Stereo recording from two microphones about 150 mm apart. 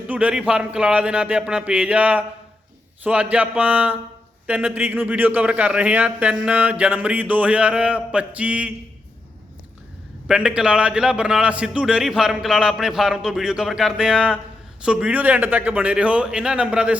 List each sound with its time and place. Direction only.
0.1 s a man's voice: 10° right (ahead or behind)
10.2 s a man's voice: 5° right (ahead or behind)